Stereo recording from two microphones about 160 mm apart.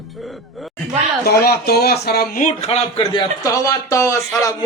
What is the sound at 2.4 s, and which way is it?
A man's voice, 40° left (ahead or behind).